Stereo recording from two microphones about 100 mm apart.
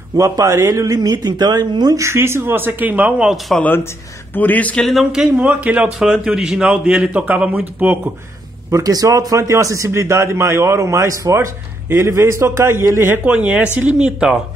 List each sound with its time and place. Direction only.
0.2 s a man's voice: 30° right (ahead or behind)
2.0 s a man's voice: 25° right (ahead or behind); by 3.5 s 10° right (ahead or behind)
4.3 s speech: 20° left (ahead or behind)
4.8 s a man's voice: centre (ahead or behind)
5.4 s a man's voice: 15° right (ahead or behind)
5.9 s a man's voice: 5° right (ahead or behind); by 8.1 s 20° right (ahead or behind)
8.6 s a man's voice: 35° right (ahead or behind); by 14.4 s 5° right (ahead or behind)